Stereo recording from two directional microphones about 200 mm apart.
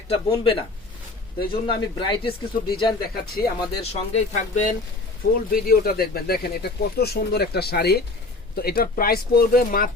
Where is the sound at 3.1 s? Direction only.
50° left (ahead or behind).